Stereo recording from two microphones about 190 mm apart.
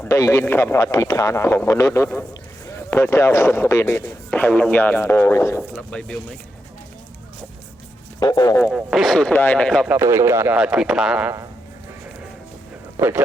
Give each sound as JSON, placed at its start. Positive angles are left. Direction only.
{"t": 0.0, "sound": "speech", "side_deg": 15}
{"t": 8.2, "sound": "speech", "side_deg": 20}
{"t": 8.6, "sound": "speech", "side_deg": 0}
{"t": 9.9, "sound": "a man's voice", "side_deg": -15}
{"t": 13.0, "sound": "speech", "side_deg": -10}